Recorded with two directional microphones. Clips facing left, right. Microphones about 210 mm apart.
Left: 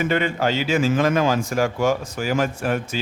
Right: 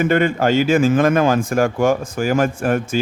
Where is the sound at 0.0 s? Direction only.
50° right (ahead or behind).